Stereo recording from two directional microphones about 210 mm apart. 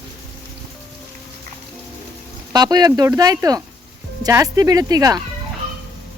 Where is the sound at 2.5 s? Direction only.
20° right (ahead or behind).